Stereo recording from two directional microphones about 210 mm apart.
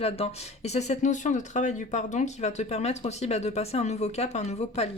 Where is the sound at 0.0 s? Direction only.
30° left (ahead or behind).